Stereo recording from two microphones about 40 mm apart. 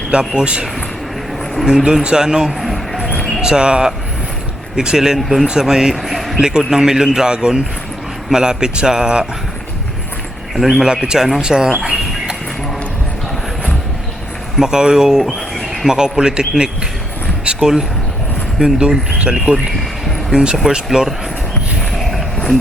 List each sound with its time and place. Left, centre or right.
0.1 s speech: right
1.6 s a man's voice: centre
2.6 s a sound: centre
3.4 s a man's voice: right; by 6.3 s centre
6.6 s a man's voice: centre
10.5 s speech: centre
10.8 s a man's voice: centre
14.6 s a man's voice: centre
17.4 s a sound: centre
18.6 s a man's voice: right